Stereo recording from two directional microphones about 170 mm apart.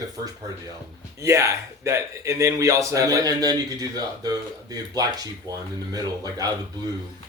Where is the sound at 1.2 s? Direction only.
15° right (ahead or behind).